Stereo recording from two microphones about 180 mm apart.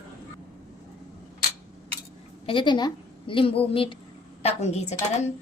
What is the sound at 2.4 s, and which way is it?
A woman's voice, 25° left (ahead or behind).